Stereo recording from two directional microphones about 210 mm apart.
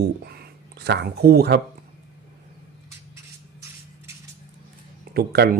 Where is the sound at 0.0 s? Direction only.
50° right (ahead or behind).